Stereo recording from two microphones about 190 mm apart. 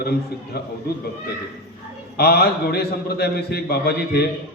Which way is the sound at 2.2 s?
55° left (ahead or behind).